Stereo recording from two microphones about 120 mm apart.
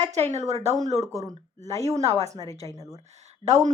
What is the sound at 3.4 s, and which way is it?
Speech, 70° right (ahead or behind).